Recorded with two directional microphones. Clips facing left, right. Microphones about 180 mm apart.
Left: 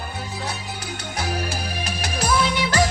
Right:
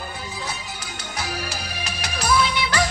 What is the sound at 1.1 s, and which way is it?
Music, 55° left (ahead or behind).